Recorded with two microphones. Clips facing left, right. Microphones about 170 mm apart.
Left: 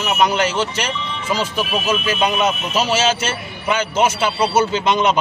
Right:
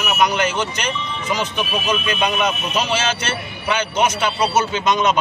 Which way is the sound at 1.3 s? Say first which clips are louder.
Left 2 dB; 5° left (ahead or behind).